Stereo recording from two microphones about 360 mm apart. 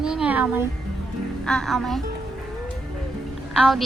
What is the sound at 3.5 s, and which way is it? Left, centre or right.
Speech, centre.